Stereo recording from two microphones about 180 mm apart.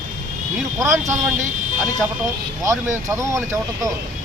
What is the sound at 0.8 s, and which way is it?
Speech, 15° right (ahead or behind).